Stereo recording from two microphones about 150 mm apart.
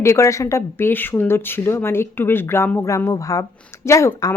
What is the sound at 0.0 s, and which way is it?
A woman's voice, 20° left (ahead or behind).